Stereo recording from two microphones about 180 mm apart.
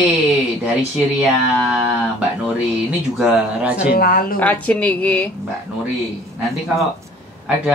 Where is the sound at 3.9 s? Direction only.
55° left (ahead or behind).